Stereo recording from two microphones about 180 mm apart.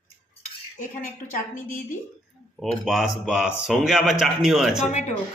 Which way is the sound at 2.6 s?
Centre (ahead or behind).